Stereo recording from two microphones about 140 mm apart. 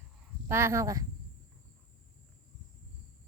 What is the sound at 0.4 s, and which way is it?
Speech, 20° right (ahead or behind).